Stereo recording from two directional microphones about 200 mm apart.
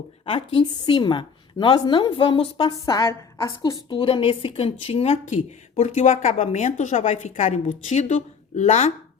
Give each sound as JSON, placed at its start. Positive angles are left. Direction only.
{"t": 0.3, "sound": "a woman's voice", "side_deg": 25}